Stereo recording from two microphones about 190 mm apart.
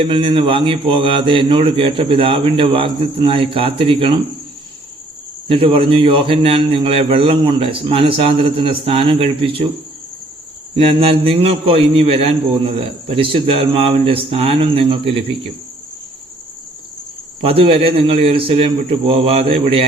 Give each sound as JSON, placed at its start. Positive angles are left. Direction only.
{"t": 0.0, "sound": "a man's voice", "side_deg": -25}
{"t": 5.5, "sound": "a man's voice", "side_deg": -30}
{"t": 10.8, "sound": "a man's voice", "side_deg": -30}
{"t": 17.4, "sound": "a man's voice", "side_deg": -30}